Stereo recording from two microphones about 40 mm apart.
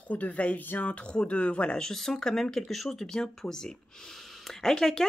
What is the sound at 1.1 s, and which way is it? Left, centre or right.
Speech, left.